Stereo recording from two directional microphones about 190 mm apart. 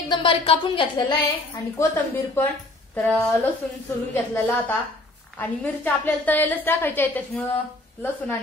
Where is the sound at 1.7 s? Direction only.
10° left (ahead or behind).